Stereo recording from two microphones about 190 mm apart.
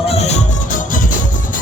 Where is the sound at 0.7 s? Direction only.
45° left (ahead or behind).